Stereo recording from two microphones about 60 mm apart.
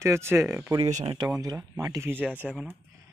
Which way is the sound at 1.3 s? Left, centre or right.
Right.